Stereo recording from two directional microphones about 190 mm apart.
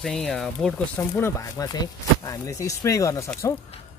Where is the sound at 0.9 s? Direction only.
15° left (ahead or behind).